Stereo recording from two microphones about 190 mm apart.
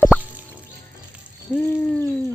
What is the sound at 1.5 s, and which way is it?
Speech, 10° left (ahead or behind).